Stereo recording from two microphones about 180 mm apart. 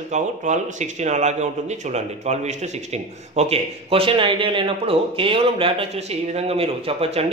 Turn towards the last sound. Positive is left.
turn(degrees=-35)  # may be behind; listen again after turning